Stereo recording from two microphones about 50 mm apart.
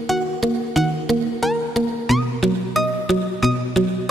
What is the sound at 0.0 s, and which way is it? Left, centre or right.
Music, centre.